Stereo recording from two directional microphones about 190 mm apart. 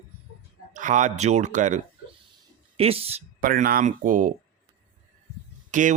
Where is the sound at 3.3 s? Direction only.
45° right (ahead or behind).